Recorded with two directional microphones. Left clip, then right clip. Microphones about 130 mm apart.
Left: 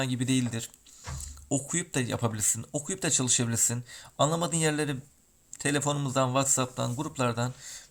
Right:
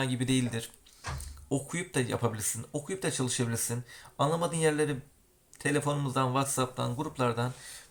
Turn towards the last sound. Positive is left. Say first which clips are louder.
# even
turn(degrees=35)  # may be behind; listen again after turning